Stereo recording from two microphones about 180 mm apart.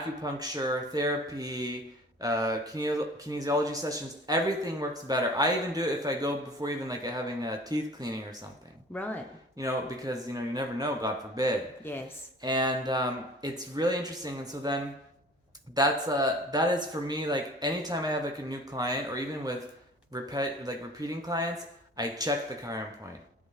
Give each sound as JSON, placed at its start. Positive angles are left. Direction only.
{"t": 0.2, "sound": "speech", "side_deg": -20}
{"t": 9.6, "sound": "speech", "side_deg": -20}
{"t": 11.9, "sound": "speech", "side_deg": 10}
{"t": 12.4, "sound": "speech", "side_deg": -25}